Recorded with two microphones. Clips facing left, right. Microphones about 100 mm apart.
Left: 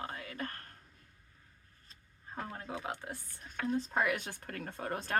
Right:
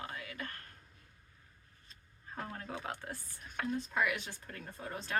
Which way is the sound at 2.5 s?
15° left (ahead or behind).